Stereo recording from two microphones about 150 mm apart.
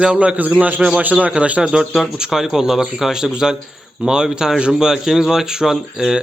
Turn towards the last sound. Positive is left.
turn(degrees=-5)  # may be behind; listen again after turning